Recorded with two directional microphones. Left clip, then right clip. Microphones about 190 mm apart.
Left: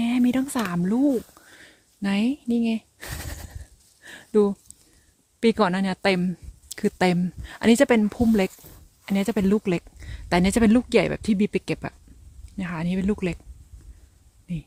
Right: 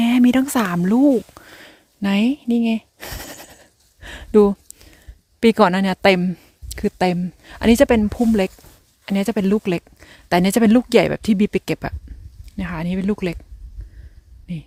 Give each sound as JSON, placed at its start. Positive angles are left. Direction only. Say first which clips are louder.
{"t": 0.0, "sound": "a sound", "louder": "right 7 dB", "side_deg": -30}
{"t": 5.4, "sound": "speech", "louder": "right 7 dB", "side_deg": -25}
{"t": 14.5, "sound": "speech", "louder": "right 2 dB", "side_deg": -15}